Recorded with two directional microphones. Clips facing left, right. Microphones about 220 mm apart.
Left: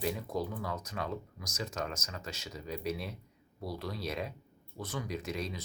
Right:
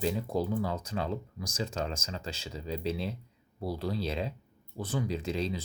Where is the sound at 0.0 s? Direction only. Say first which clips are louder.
Right 4 dB; 30° right (ahead or behind).